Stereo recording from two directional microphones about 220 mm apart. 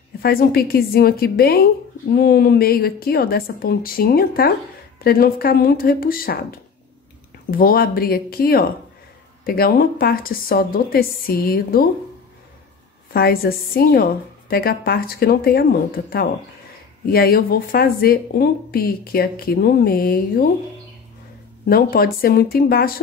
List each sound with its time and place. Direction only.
0.2 s speech: 45° left (ahead or behind)
13.1 s speech: 45° left (ahead or behind)
21.6 s speech: 40° left (ahead or behind)